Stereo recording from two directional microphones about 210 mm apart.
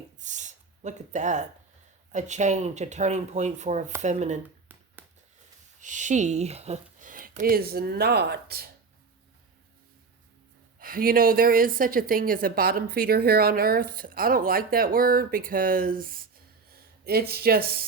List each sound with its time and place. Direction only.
0.2 s speech: 35° right (ahead or behind)
5.0 s a sound: 10° right (ahead or behind)
5.8 s speech: 35° right (ahead or behind)
10.8 s a woman's voice: 45° right (ahead or behind)